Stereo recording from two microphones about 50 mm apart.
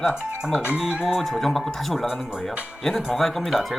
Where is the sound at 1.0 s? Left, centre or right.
Centre.